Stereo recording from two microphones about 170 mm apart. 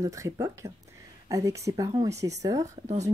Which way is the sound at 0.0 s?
20° right (ahead or behind).